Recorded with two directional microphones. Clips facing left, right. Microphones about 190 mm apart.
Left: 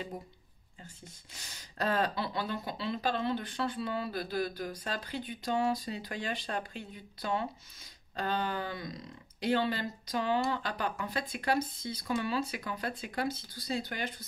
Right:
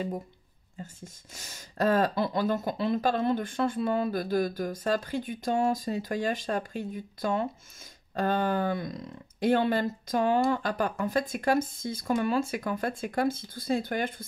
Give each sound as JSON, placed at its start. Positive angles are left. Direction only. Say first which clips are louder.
{"t": 0.8, "sound": "speech", "louder": "right 5 dB", "side_deg": -45}